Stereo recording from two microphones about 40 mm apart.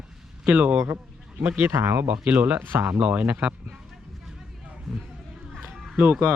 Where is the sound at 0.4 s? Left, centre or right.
Right.